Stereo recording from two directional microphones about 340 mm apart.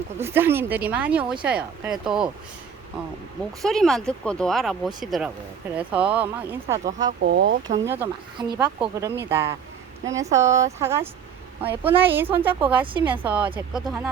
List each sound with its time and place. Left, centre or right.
0.2 s speech: centre
3.6 s speech: centre
7.3 s speech: right
7.9 s speech: centre